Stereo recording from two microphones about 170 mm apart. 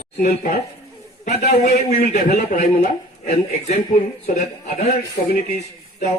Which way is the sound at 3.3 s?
45° left (ahead or behind).